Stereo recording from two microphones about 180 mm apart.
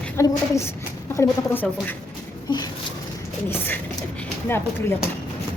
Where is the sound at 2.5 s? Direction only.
25° left (ahead or behind).